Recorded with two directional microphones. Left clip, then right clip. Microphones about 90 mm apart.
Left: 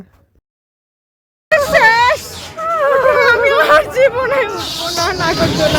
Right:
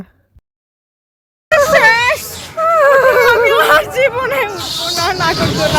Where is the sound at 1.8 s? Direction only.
25° left (ahead or behind).